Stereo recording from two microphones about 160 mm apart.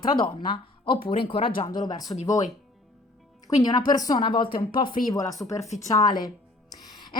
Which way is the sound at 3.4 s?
25° left (ahead or behind).